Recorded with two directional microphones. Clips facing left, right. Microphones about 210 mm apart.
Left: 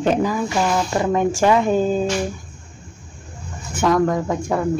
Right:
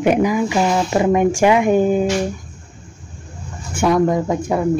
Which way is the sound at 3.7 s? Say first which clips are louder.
Right 2 dB; 15° right (ahead or behind).